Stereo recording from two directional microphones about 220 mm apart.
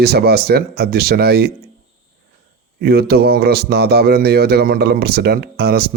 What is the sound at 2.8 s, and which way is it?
Speech, 45° right (ahead or behind).